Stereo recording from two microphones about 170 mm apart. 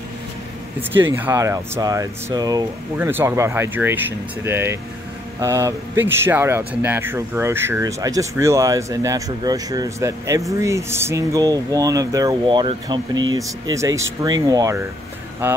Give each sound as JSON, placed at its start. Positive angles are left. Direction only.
{"t": 0.9, "sound": "speech", "side_deg": -10}